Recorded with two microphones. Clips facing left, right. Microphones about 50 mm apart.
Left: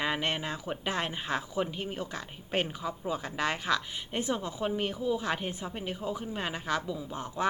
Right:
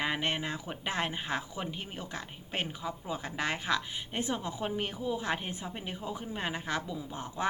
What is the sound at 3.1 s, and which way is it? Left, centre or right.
Speech, centre.